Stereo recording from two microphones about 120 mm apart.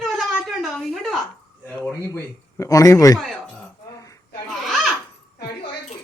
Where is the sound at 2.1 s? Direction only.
25° left (ahead or behind).